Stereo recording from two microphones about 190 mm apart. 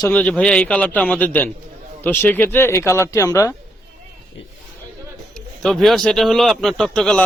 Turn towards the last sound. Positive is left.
turn(degrees=5)  # may be behind; listen again after turning